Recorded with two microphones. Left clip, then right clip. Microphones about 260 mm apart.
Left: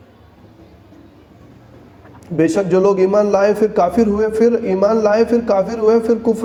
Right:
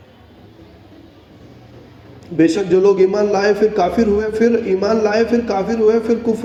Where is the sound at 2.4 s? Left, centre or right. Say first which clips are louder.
Right 1 dB; left.